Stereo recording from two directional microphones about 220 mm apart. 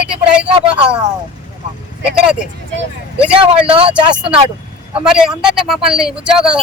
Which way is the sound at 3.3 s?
25° right (ahead or behind).